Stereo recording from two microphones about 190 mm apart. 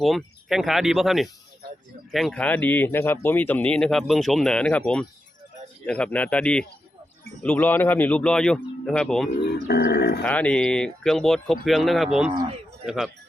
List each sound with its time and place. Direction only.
0.0 s speech: centre (ahead or behind)
5.8 s speech: 5° left (ahead or behind)
9.6 s speech: 60° left (ahead or behind)
10.2 s speech: 5° left (ahead or behind)